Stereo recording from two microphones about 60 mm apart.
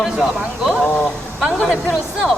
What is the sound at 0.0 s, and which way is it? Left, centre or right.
Speech, centre.